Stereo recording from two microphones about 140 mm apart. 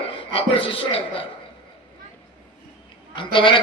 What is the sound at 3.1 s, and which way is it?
Speech, 35° left (ahead or behind).